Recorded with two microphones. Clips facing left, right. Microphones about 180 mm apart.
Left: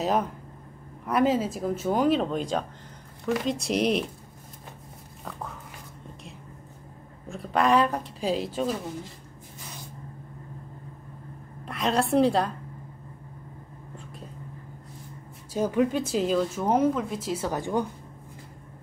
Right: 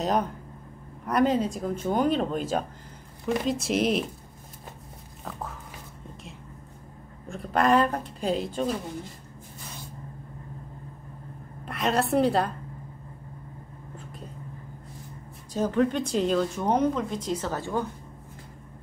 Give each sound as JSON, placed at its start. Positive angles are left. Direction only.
{"t": 0.0, "sound": "speech", "side_deg": 0}
{"t": 7.2, "sound": "speech", "side_deg": 0}
{"t": 11.6, "sound": "a woman's voice", "side_deg": 0}
{"t": 15.5, "sound": "speech", "side_deg": 10}